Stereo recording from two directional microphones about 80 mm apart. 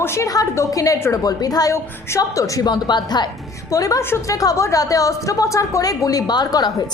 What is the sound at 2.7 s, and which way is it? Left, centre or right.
Speech, left.